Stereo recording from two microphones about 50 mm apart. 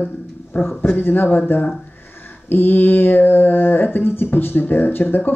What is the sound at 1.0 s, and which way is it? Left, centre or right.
Music, left.